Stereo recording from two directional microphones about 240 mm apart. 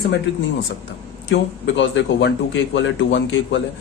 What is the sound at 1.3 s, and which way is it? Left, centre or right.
Speech, left.